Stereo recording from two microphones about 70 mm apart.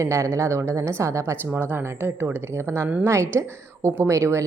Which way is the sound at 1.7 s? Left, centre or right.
Right.